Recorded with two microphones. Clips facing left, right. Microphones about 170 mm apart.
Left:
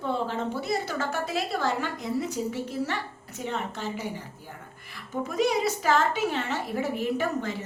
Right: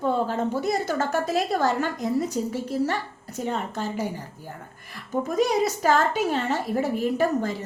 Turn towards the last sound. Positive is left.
turn(degrees=-40)  # may be behind; listen again after turning